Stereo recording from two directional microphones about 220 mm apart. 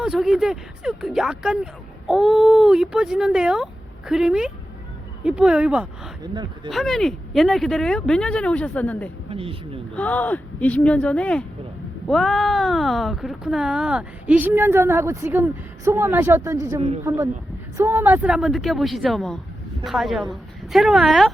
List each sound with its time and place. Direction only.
0.0 s speech: centre (ahead or behind)
6.2 s speech: 20° right (ahead or behind)
6.7 s speech: centre (ahead or behind)
9.3 s speech: 25° right (ahead or behind)
9.9 s a woman's voice: 5° left (ahead or behind)